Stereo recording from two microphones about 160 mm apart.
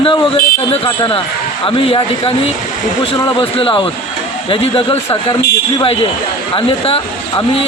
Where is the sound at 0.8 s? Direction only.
30° left (ahead or behind).